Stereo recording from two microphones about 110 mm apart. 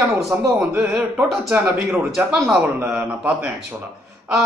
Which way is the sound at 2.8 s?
15° right (ahead or behind).